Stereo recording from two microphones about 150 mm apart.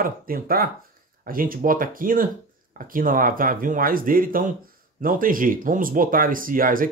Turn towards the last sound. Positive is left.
turn(degrees=-65)  # may be behind; listen again after turning